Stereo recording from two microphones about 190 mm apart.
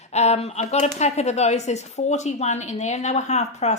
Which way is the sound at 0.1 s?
35° left (ahead or behind).